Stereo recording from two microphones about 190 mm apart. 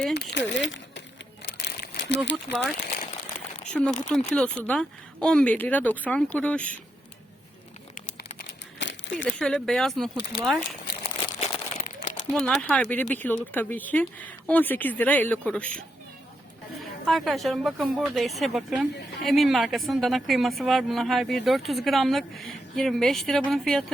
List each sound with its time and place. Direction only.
0.1 s speech: 65° left (ahead or behind)
1.5 s crumpling: 65° left (ahead or behind)
2.3 s speech: 5° right (ahead or behind)
8.8 s crumpling: 70° left (ahead or behind)
9.2 s speech: 5° left (ahead or behind)
12.3 s speech: 5° left (ahead or behind)
17.1 s speech: centre (ahead or behind)